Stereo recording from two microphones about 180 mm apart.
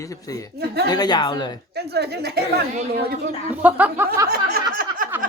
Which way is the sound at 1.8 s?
65° right (ahead or behind).